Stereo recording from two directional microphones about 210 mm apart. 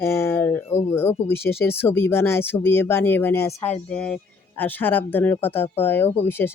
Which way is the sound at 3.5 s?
30° left (ahead or behind).